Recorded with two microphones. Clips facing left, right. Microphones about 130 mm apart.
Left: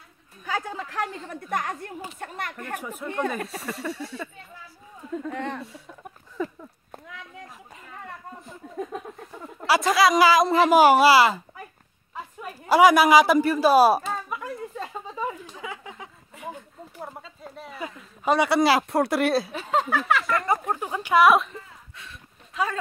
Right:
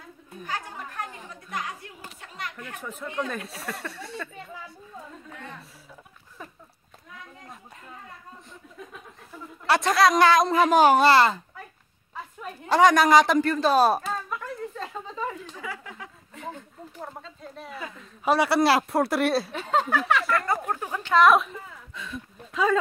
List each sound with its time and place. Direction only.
0.7 s speech: 85° left
1.3 s a woman's voice: 55° left (ahead or behind)
2.8 s speech: 10° left (ahead or behind)
3.3 s a woman's voice: centre (ahead or behind)
5.2 s speech: 80° left
9.7 s a woman's voice: centre (ahead or behind)
12.4 s a sound: 5° left (ahead or behind)
17.9 s speech: centre (ahead or behind)
20.6 s a sound: 15° left (ahead or behind)